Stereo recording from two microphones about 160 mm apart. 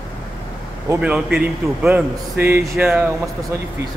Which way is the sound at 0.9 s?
10° right (ahead or behind).